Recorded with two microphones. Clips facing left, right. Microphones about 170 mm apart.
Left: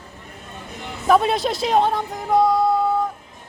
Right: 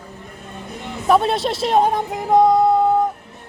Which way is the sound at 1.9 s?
20° right (ahead or behind).